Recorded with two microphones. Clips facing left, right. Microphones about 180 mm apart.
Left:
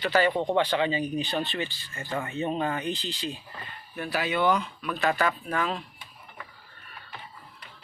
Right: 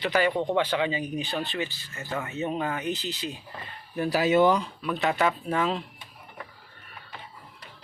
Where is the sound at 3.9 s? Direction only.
35° right (ahead or behind).